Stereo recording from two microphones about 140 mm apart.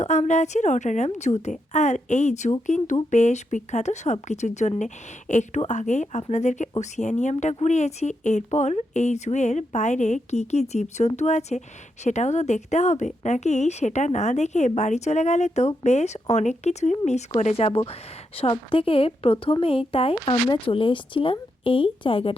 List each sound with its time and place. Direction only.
0.0 s speech: 55° left (ahead or behind); by 22.4 s 40° left (ahead or behind)